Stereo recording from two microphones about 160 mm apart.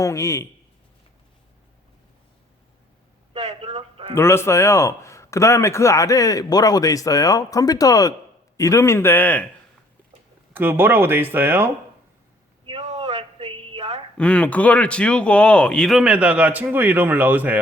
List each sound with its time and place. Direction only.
0.0 s a man's voice: 20° left (ahead or behind)
3.4 s a sound: 40° right (ahead or behind)
4.1 s a man's voice: 15° left (ahead or behind)
10.5 s speech: 15° right (ahead or behind)
12.6 s a sound: 40° right (ahead or behind)
14.2 s speech: 5° left (ahead or behind); by 17.6 s 10° right (ahead or behind)